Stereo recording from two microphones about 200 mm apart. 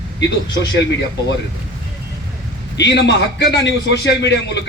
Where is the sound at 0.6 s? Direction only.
60° left (ahead or behind).